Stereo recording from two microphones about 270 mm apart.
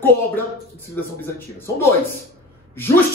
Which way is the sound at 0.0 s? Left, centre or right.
Centre.